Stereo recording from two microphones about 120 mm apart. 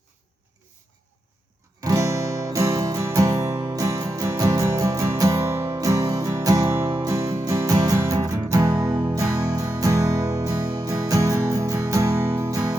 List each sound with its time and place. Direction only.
1.8 s music: 25° right (ahead or behind)